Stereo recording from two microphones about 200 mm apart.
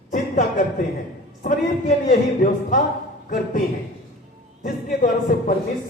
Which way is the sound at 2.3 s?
40° left (ahead or behind).